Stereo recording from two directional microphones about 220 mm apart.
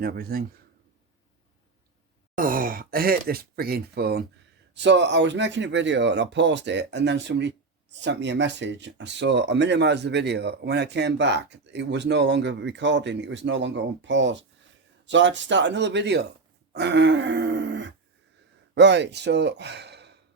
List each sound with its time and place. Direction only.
0.0 s speech: 45° right (ahead or behind)
2.3 s speech: 40° right (ahead or behind)